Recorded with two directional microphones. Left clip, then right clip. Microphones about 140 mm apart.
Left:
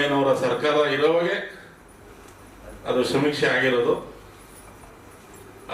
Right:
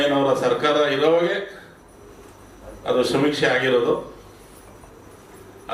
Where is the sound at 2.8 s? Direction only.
30° right (ahead or behind).